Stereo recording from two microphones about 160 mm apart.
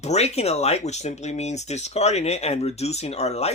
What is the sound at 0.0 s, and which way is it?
Speech, 45° left (ahead or behind).